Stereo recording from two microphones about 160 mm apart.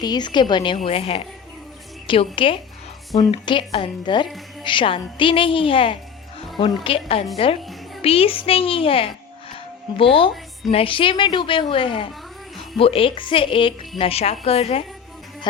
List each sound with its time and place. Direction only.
0.0 s a woman's voice: 25° left (ahead or behind)